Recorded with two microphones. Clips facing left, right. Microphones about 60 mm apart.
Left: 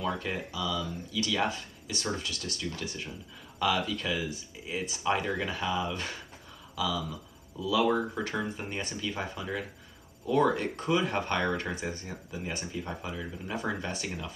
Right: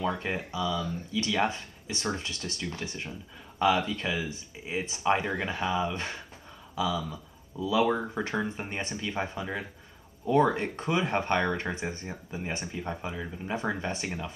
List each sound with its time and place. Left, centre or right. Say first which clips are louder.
0.0 s speech: right 2 dB; right
6.7 s a sound: right 2 dB; right
7.6 s speech: right 1 dB; right